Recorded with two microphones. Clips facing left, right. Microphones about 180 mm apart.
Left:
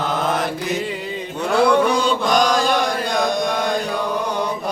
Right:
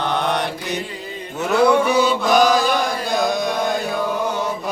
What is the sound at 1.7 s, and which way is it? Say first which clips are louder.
Chant: even; 5° right (ahead or behind).